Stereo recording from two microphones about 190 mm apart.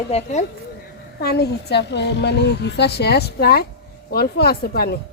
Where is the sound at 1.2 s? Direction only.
55° left (ahead or behind).